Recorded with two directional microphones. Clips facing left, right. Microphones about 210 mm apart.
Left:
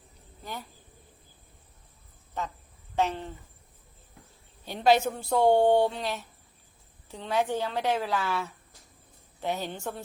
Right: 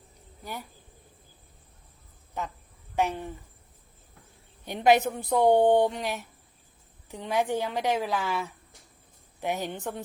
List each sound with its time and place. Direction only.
0.4 s a woman's voice: 10° right (ahead or behind)
2.9 s a woman's voice: 15° right (ahead or behind)
4.6 s a woman's voice: 15° right (ahead or behind)